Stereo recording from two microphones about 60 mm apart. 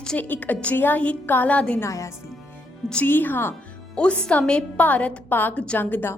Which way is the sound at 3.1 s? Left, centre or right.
Left.